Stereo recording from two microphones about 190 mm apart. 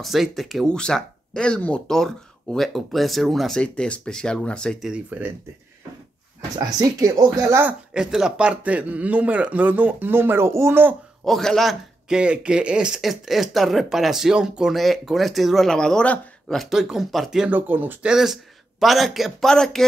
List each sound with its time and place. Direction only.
0.0 s a man's voice: centre (ahead or behind)
6.6 s speech: 20° right (ahead or behind)
7.9 s a man's voice: 5° right (ahead or behind)
11.2 s a man's voice: centre (ahead or behind)